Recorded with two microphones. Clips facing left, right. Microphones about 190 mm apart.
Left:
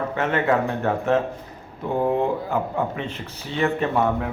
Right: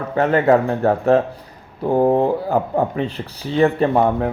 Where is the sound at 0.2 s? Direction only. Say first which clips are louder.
Right 7 dB; 35° right (ahead or behind).